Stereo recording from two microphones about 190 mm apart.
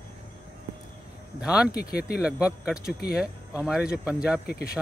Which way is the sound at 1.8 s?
55° left (ahead or behind).